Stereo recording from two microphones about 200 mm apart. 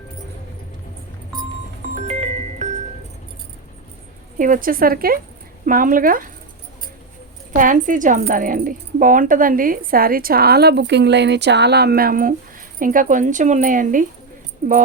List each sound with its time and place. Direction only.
2.0 s music: 30° right (ahead or behind)
4.4 s a woman's voice: 40° right (ahead or behind)
7.5 s a woman's voice: 40° right (ahead or behind)